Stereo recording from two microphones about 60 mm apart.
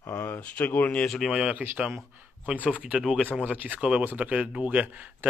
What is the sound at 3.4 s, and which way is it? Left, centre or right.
Speech, right.